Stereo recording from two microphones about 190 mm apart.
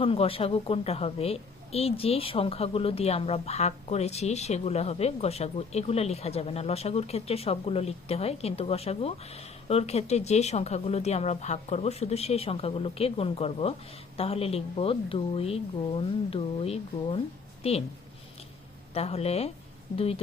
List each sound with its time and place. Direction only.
0.0 s a woman's voice: 30° left (ahead or behind)
18.9 s a woman's voice: 30° left (ahead or behind)